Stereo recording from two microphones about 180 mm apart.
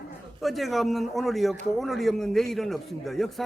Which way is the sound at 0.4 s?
Centre (ahead or behind).